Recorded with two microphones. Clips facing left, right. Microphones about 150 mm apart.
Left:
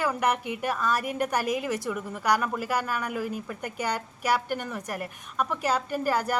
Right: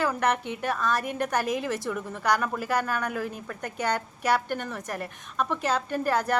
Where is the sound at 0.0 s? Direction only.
10° left (ahead or behind).